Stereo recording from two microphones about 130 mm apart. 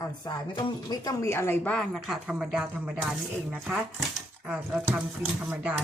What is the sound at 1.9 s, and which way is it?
Speech, centre (ahead or behind).